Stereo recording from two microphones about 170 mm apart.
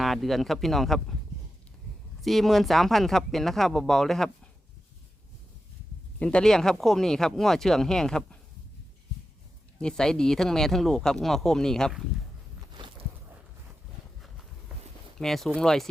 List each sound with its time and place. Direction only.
0.0 s speech: centre (ahead or behind)
2.2 s speech: centre (ahead or behind)
6.1 s speech: 5° left (ahead or behind)
9.8 s speech: 5° left (ahead or behind)
12.7 s walk: 30° right (ahead or behind)
15.2 s speech: centre (ahead or behind)